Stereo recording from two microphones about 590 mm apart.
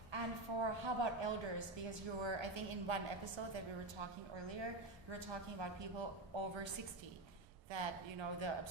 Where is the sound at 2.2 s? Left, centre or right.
Right.